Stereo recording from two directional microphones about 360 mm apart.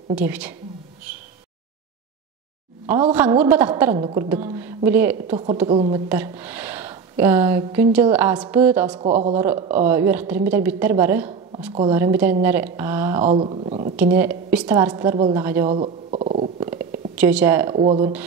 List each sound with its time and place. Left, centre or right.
0.1 s speech: centre
2.9 s speech: centre
8.5 s speech: centre
8.8 s speech: centre
9.1 s a man's voice: centre
9.4 s speech: centre
13.2 s a sound: centre
13.9 s a woman's voice: centre